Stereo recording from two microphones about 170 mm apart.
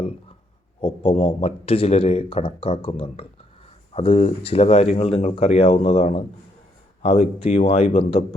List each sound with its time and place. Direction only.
0.8 s speech: 35° left (ahead or behind)